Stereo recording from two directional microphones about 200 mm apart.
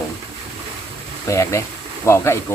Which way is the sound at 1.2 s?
15° left (ahead or behind).